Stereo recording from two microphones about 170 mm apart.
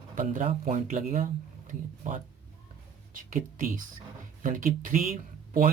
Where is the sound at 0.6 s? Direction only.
45° right (ahead or behind).